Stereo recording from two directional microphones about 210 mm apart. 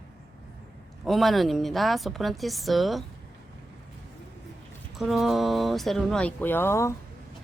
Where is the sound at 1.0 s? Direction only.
Centre (ahead or behind).